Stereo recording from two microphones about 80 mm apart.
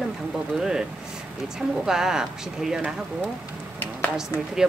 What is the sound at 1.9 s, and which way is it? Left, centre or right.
Speech, centre.